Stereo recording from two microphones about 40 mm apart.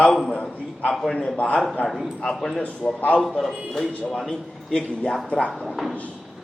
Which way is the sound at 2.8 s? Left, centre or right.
Left.